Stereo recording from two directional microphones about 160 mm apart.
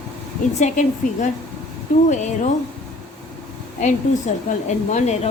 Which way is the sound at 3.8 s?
50° left (ahead or behind).